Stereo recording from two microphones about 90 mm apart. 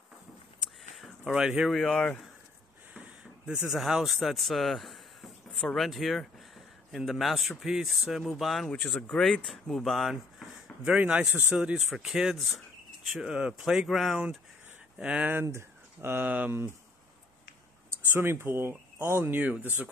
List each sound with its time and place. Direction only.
0.6 s a sound: centre (ahead or behind)
1.7 s speech: 5° left (ahead or behind)
3.7 s speech: 5° right (ahead or behind)
10.9 s speech: 15° right (ahead or behind)
11.9 s speech: 5° right (ahead or behind)
15.0 s speech: 15° right (ahead or behind)
15.4 s speech: 30° right (ahead or behind)
17.8 s speech: 25° right (ahead or behind)
19.3 s speech: 20° right (ahead or behind)